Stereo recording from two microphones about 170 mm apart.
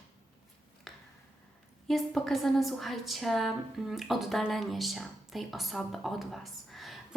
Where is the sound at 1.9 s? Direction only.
Centre (ahead or behind).